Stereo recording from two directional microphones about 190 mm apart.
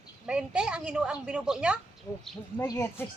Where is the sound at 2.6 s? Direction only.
15° left (ahead or behind).